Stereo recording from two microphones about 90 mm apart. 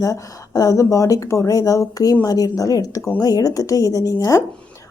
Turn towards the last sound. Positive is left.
turn(degrees=40)  # may be behind; listen again after turning